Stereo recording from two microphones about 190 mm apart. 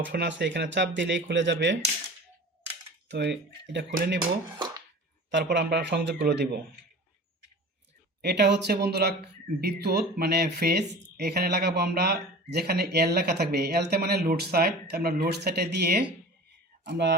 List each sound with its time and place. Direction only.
0.0 s speech: 65° right (ahead or behind)
3.1 s speech: 65° right (ahead or behind)
5.5 s speech: 55° right (ahead or behind)
8.2 s speech: 60° right (ahead or behind)